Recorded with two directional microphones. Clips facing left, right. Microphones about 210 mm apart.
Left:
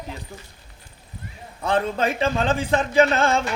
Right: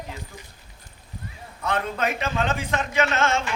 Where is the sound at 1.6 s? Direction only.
30° left (ahead or behind).